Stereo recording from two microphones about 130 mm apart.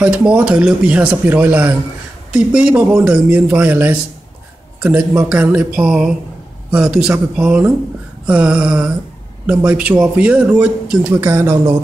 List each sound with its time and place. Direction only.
0.0 s speech: 10° right (ahead or behind)
11.1 s speech: 20° right (ahead or behind)